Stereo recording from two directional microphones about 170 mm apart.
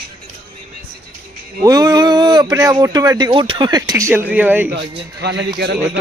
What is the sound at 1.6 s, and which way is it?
Speech, 20° right (ahead or behind).